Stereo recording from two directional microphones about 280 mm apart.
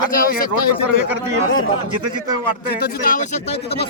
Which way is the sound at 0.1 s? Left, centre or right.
Left.